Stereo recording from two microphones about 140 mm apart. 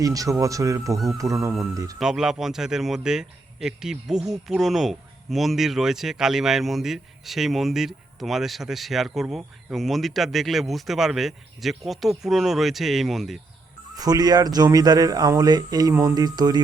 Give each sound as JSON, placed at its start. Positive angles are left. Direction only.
{"t": 0.0, "sound": "speech", "side_deg": -25}
{"t": 2.0, "sound": "a man's voice", "side_deg": -5}
{"t": 13.9, "sound": "speech", "side_deg": -30}